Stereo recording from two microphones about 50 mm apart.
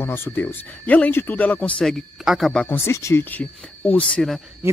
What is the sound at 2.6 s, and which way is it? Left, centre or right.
Speech, left.